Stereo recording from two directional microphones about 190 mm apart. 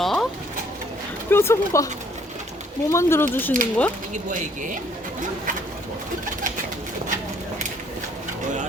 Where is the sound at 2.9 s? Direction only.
15° left (ahead or behind).